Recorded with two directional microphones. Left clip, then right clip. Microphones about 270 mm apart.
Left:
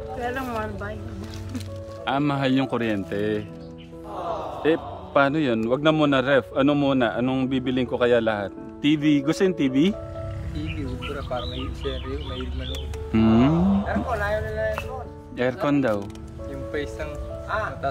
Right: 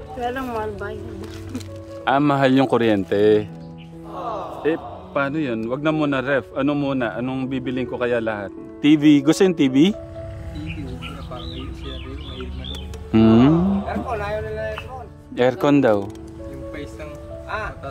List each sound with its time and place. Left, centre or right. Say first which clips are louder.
0.2 s speech: right 4 dB; right
2.0 s speech: right 6 dB; centre
4.1 s a sound: right 1 dB; centre
5.7 s a man's voice: left 2 dB; centre
8.9 s speech: right 7 dB; right
11.3 s speech: left 3 dB; centre
13.1 s music: right 5 dB; right
13.5 s a sound: right 4 dB; centre
14.2 s music: left 1 dB; right
15.3 s speech: right 6 dB; right
17.5 s music: left 1 dB; right